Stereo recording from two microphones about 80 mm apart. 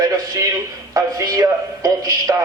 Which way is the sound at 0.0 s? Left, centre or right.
Right.